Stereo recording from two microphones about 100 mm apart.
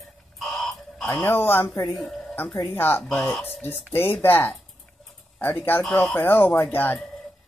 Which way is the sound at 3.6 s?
20° left (ahead or behind).